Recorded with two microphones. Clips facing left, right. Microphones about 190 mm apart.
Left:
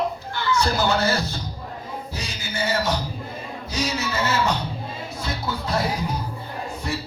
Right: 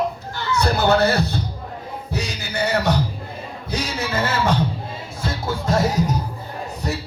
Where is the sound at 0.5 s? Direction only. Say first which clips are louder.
Right 5 dB; 65° right (ahead or behind).